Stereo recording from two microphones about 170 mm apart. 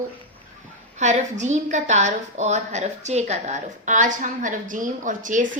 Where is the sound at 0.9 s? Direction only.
45° right (ahead or behind).